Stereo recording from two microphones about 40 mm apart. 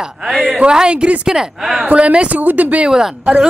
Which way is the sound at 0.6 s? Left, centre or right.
Right.